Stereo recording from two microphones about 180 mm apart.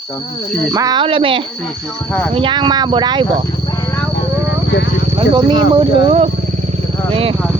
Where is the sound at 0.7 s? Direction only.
20° right (ahead or behind).